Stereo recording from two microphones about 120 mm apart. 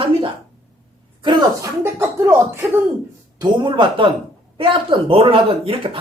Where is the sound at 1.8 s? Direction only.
25° right (ahead or behind).